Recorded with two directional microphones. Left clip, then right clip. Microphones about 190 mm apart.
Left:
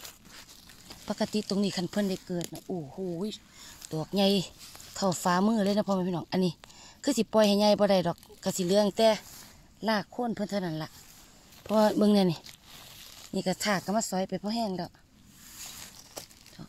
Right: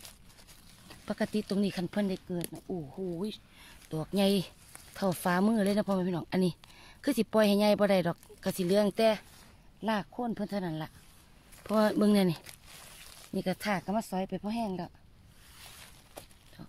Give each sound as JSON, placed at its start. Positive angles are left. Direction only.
{"t": 0.8, "sound": "speech", "side_deg": 10}
{"t": 3.9, "sound": "speech", "side_deg": 10}
{"t": 9.8, "sound": "speech", "side_deg": 35}
{"t": 11.6, "sound": "speech", "side_deg": 10}